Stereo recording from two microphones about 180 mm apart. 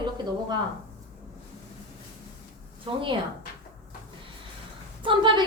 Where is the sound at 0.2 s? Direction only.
25° right (ahead or behind).